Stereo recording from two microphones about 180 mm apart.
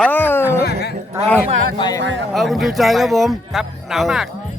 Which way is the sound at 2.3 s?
Centre (ahead or behind).